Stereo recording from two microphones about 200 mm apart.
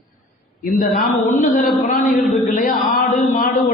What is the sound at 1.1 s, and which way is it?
Speech, 40° left (ahead or behind).